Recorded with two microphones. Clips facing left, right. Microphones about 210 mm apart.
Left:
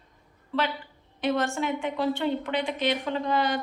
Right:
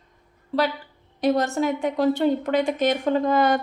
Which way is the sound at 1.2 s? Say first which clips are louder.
Right 5 dB; 40° right (ahead or behind).